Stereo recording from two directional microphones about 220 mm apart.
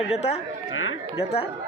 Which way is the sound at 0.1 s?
30° left (ahead or behind).